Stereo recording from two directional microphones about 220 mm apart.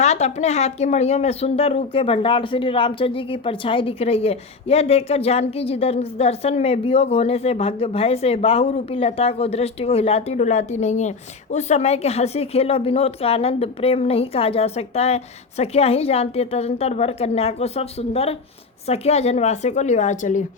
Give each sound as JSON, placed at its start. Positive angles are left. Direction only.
{"t": 0.0, "sound": "a woman's voice", "side_deg": 30}